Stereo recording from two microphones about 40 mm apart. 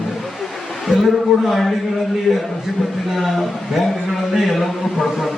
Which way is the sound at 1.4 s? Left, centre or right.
Centre.